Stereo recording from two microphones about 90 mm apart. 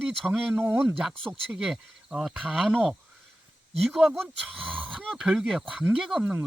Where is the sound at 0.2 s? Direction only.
5° left (ahead or behind).